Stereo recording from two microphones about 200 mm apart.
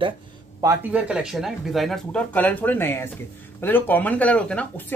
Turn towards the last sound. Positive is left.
turn(degrees=5)  # may be behind; listen again after turning